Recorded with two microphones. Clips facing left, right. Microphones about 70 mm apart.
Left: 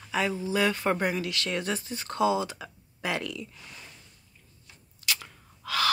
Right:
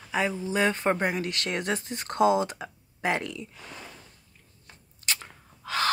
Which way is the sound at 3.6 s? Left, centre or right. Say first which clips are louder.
Right 5 dB; right.